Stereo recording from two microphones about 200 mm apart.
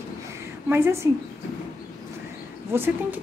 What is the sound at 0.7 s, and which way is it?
Speech, 10° right (ahead or behind).